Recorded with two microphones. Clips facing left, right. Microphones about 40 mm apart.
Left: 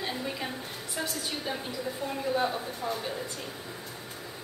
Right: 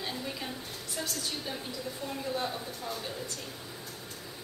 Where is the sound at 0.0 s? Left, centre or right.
Centre.